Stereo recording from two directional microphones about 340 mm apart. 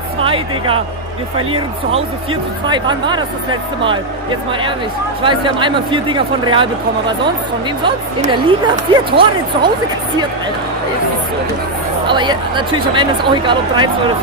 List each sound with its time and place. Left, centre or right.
0.2 s speech: centre
2.7 s speech: centre
7.8 s speech: centre
12.1 s speech: centre